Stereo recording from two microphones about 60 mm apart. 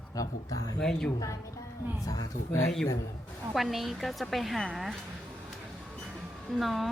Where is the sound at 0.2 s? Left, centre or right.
Left.